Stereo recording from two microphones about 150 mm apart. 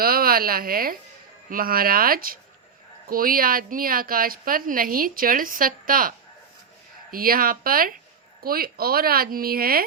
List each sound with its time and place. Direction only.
0.0 s a woman's voice: 80° right